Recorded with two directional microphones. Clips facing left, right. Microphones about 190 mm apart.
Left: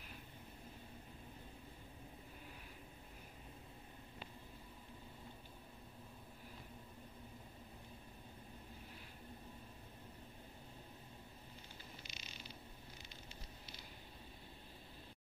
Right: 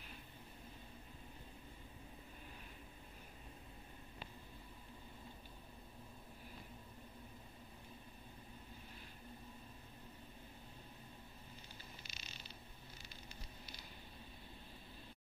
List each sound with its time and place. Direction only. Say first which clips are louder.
12.1 s mechanisms: left 2 dB; 15° left (ahead or behind)